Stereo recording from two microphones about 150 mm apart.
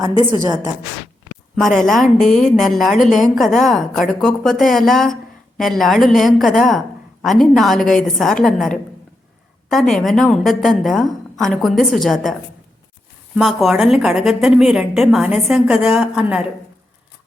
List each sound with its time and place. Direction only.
0.0 s a woman's voice: 30° right (ahead or behind)
1.5 s a woman's voice: centre (ahead or behind)
13.4 s a woman's voice: centre (ahead or behind)